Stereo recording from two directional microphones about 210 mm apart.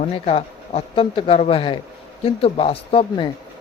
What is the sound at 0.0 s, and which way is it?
Speech, 30° left (ahead or behind).